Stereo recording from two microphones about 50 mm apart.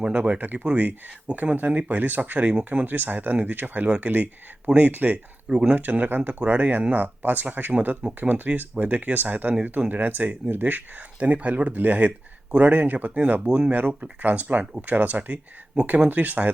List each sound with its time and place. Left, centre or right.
0.0 s speech: right
14.0 s speech: right
16.0 s speech: right